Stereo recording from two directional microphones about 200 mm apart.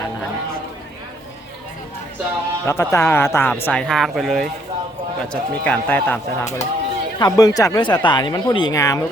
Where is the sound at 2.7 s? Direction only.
15° left (ahead or behind).